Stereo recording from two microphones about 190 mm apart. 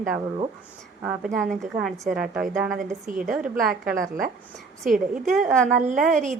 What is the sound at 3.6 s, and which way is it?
Speech, centre (ahead or behind).